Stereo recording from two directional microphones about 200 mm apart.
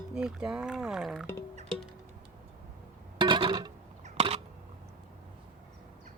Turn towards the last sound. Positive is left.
turn(degrees=-30)  # may be behind; listen again after turning